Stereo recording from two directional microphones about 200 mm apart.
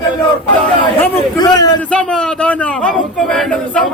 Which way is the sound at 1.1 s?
20° left (ahead or behind).